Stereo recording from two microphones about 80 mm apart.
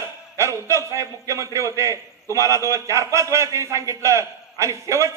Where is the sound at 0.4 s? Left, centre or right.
Right.